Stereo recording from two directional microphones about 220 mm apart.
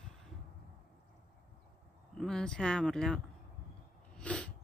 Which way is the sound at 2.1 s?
Centre (ahead or behind).